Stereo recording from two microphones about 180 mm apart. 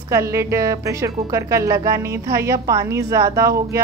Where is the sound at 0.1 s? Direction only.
15° right (ahead or behind).